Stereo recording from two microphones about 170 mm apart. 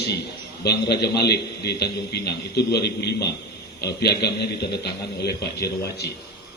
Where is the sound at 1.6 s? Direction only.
75° left (ahead or behind).